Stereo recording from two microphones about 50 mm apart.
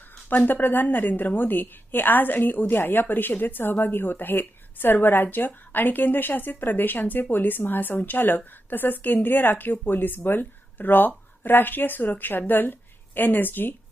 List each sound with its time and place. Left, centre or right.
0.3 s a woman's voice: left